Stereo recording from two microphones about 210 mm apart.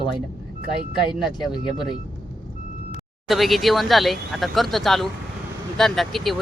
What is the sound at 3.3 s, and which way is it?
Speech, centre (ahead or behind).